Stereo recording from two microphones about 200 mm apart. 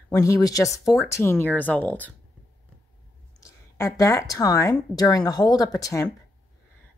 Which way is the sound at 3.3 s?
15° left (ahead or behind).